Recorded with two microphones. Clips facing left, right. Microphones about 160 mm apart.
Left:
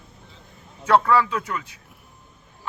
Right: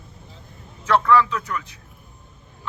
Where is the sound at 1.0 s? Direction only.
30° left (ahead or behind).